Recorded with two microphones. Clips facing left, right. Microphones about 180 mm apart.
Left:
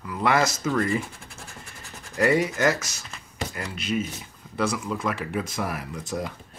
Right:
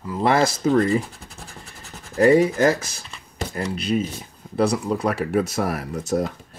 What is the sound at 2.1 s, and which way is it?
Speech, 35° right (ahead or behind).